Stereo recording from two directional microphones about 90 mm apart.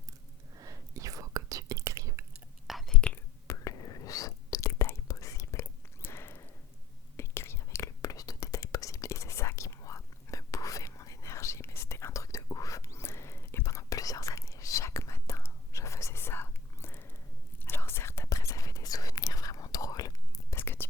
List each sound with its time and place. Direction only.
0.5 s whispering: 40° right (ahead or behind)
2.6 s whispering: 5° left (ahead or behind)
3.4 s whispering: 40° left (ahead or behind)
6.0 s a sound: 25° left (ahead or behind)
7.2 s whispering: 30° left (ahead or behind)
20.6 s whispering: 25° left (ahead or behind)